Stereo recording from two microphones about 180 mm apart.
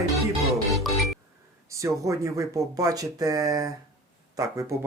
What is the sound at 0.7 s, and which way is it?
Music, centre (ahead or behind).